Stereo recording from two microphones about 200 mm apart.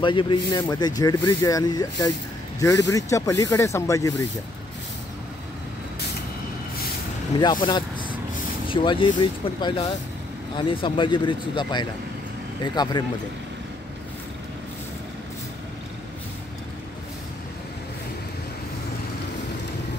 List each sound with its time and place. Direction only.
0.0 s speech: 25° left (ahead or behind)
7.6 s vehicle: 25° left (ahead or behind)
8.6 s speech: 25° left (ahead or behind)